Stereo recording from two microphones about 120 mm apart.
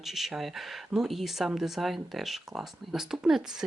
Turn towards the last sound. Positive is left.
turn(degrees=-5)  # may be behind; listen again after turning